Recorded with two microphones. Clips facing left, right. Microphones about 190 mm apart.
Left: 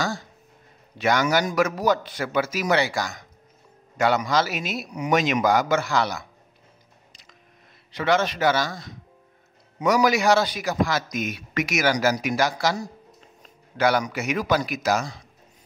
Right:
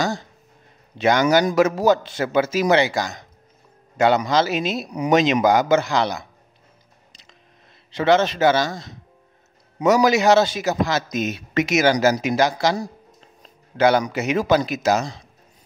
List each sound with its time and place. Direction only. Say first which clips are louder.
0.0 s a man's voice: right 4 dB; 20° right (ahead or behind)
7.9 s a man's voice: right 5 dB; 25° right (ahead or behind)